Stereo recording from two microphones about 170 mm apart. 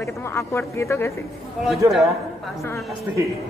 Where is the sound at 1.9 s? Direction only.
Centre (ahead or behind).